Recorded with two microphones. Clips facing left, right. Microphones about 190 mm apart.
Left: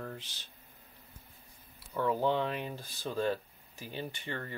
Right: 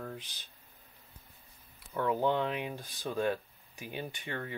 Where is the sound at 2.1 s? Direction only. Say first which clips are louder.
Right 1 dB; 15° right (ahead or behind).